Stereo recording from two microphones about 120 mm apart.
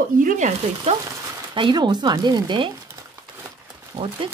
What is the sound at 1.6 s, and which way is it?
Speech, 40° right (ahead or behind).